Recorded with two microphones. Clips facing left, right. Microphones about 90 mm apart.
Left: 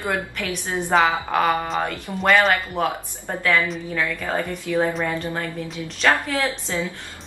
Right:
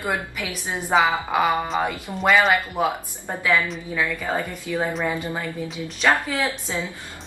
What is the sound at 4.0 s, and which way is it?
A woman's voice, 10° right (ahead or behind).